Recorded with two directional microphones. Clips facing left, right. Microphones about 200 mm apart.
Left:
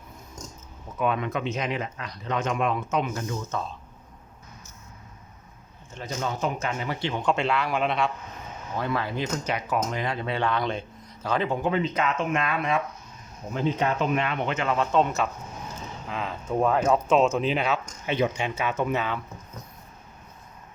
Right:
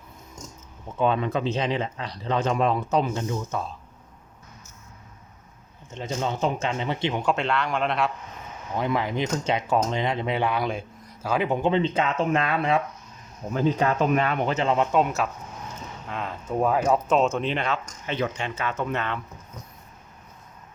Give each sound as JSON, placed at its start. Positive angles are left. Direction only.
{"t": 0.9, "sound": "speech", "side_deg": -30}
{"t": 3.5, "sound": "speech", "side_deg": -10}
{"t": 5.9, "sound": "speech", "side_deg": -25}
{"t": 7.2, "sound": "speech", "side_deg": -5}
{"t": 7.4, "sound": "speech", "side_deg": 5}
{"t": 8.8, "sound": "speech", "side_deg": -15}
{"t": 11.4, "sound": "speech", "side_deg": -25}
{"t": 14.0, "sound": "speech", "side_deg": -40}
{"t": 14.9, "sound": "speech", "side_deg": -5}